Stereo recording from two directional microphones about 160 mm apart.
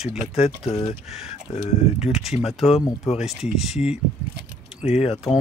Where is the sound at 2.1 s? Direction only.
Centre (ahead or behind).